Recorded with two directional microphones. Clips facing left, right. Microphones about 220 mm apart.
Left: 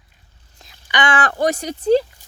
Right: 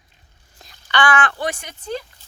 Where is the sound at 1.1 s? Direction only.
40° left (ahead or behind).